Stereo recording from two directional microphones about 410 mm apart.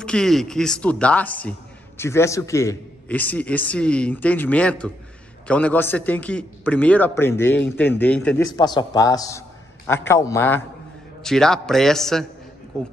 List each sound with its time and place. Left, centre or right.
0.0 s a man's voice: centre